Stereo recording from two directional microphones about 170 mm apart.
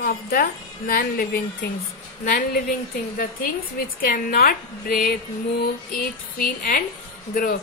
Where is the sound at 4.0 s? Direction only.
60° left (ahead or behind).